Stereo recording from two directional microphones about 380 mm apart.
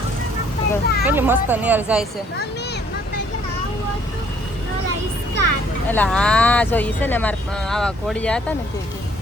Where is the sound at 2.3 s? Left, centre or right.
Left.